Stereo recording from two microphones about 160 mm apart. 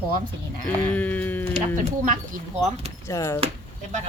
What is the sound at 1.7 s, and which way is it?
Speech, 55° right (ahead or behind).